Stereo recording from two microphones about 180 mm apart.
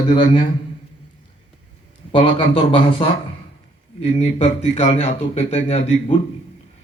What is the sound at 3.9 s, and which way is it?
Speech, 40° left (ahead or behind).